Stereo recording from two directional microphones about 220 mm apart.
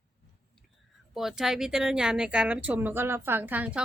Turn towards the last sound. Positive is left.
turn(degrees=-5)  # may be behind; listen again after turning